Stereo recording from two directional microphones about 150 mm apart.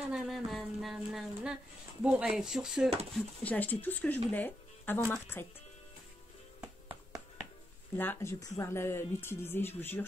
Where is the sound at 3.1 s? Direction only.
10° left (ahead or behind).